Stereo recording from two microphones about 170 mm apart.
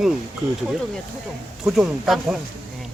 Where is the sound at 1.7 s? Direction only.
Centre (ahead or behind).